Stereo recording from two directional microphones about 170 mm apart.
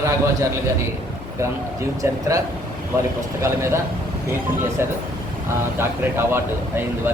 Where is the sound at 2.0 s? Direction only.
20° right (ahead or behind).